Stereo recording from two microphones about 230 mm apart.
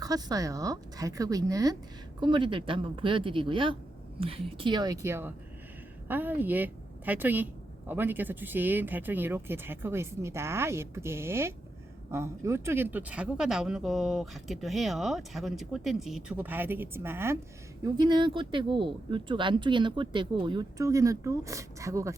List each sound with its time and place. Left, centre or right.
0.0 s speech: centre